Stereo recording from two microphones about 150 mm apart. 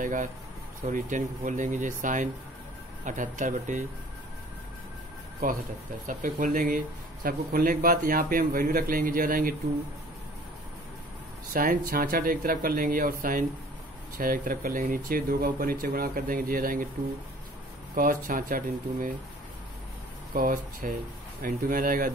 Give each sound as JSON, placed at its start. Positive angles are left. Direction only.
{"t": 0.0, "sound": "speech", "side_deg": -60}
{"t": 5.4, "sound": "speech", "side_deg": -70}
{"t": 6.0, "sound": "speech", "side_deg": -60}
{"t": 11.5, "sound": "speech", "side_deg": -70}
{"t": 17.9, "sound": "speech", "side_deg": -65}
{"t": 20.3, "sound": "speech", "side_deg": -65}